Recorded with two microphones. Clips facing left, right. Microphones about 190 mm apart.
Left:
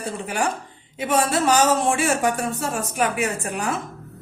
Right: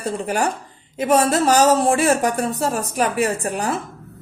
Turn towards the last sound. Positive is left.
turn(degrees=-35)  # may be behind; listen again after turning